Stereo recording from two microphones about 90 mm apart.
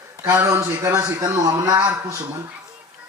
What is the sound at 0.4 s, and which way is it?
A man's voice, 35° right (ahead or behind).